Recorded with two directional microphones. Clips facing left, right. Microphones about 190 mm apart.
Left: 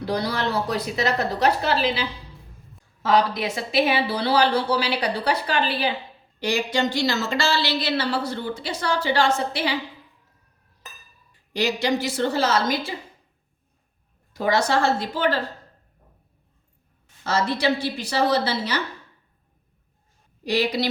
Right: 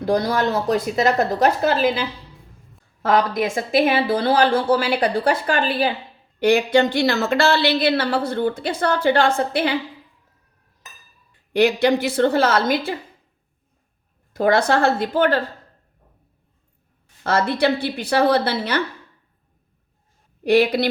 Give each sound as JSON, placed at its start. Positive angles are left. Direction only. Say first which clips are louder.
{"t": 0.0, "sound": "a woman's voice", "louder": "right 6 dB", "side_deg": -50}
{"t": 11.5, "sound": "a woman's voice", "louder": "right 6 dB", "side_deg": -55}
{"t": 14.3, "sound": "a woman's voice", "louder": "right 4 dB", "side_deg": -55}
{"t": 17.2, "sound": "a woman's voice", "louder": "right 4 dB", "side_deg": -60}
{"t": 20.4, "sound": "a woman's voice", "louder": "right 7 dB", "side_deg": -55}